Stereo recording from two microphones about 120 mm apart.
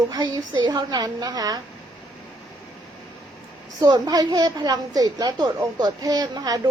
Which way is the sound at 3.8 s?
35° right (ahead or behind).